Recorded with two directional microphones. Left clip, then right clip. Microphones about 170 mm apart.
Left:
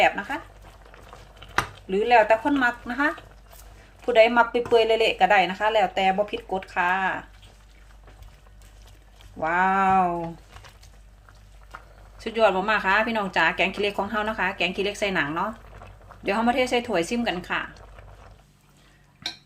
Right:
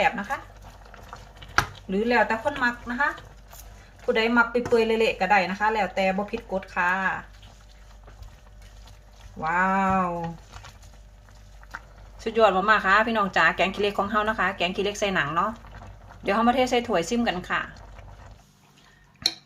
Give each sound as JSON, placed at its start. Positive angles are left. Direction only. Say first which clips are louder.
{"t": 0.0, "sound": "speech", "louder": "left 3 dB", "side_deg": 60}
{"t": 1.9, "sound": "speech", "louder": "left 7 dB", "side_deg": 60}
{"t": 9.4, "sound": "speech", "louder": "left 2 dB", "side_deg": 65}
{"t": 12.2, "sound": "speech", "louder": "right 1 dB", "side_deg": 10}